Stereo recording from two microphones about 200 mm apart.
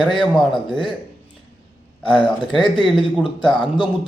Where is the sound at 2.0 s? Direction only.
25° left (ahead or behind).